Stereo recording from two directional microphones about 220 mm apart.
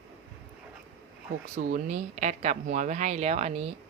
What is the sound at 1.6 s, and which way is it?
Speech, 35° right (ahead or behind).